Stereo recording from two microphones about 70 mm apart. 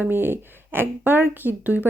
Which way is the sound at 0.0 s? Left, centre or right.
Right.